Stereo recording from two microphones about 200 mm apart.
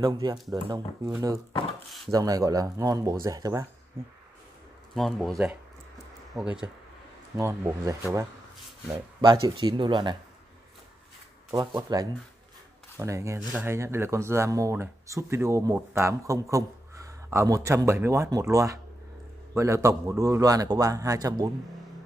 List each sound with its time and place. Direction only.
0.0 s speech: 20° right (ahead or behind)
4.9 s speech: centre (ahead or behind)
6.3 s speech: 5° right (ahead or behind)
9.2 s speech: 25° right (ahead or behind)
11.5 s speech: 20° right (ahead or behind)